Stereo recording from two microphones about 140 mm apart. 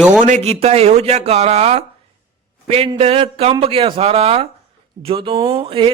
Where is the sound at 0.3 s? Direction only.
55° right (ahead or behind).